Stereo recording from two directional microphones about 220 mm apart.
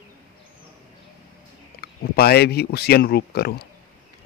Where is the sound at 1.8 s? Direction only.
45° left (ahead or behind).